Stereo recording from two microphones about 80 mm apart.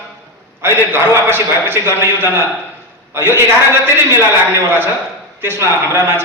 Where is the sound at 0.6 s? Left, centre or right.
Right.